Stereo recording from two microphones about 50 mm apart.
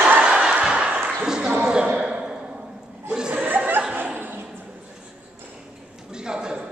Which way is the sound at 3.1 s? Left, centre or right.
Centre.